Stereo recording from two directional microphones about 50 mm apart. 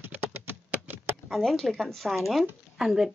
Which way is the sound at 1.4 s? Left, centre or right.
Centre.